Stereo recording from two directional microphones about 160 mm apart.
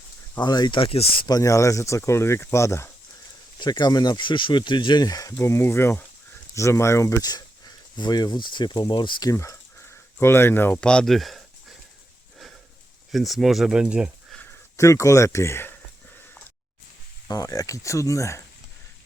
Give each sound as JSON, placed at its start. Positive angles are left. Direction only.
{"t": 0.3, "sound": "speech", "side_deg": 25}
{"t": 1.4, "sound": "speech", "side_deg": 20}
{"t": 9.3, "sound": "speech", "side_deg": 20}
{"t": 13.1, "sound": "speech", "side_deg": 0}
{"t": 14.8, "sound": "speech", "side_deg": 20}
{"t": 17.2, "sound": "speech", "side_deg": 25}